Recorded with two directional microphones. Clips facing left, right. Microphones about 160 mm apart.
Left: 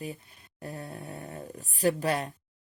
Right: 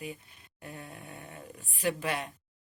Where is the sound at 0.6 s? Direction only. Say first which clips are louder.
Left 5 dB; 35° left (ahead or behind).